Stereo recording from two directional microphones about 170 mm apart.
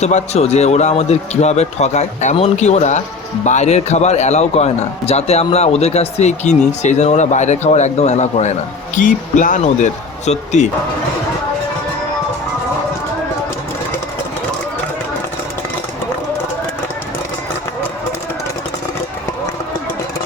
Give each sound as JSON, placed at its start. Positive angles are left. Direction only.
{"t": 0.0, "sound": "a man's voice", "side_deg": 40}